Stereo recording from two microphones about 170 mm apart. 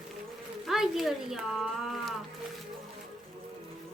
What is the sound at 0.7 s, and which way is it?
Speech, centre (ahead or behind).